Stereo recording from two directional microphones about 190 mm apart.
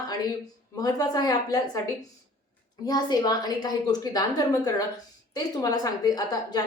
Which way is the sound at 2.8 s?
20° left (ahead or behind).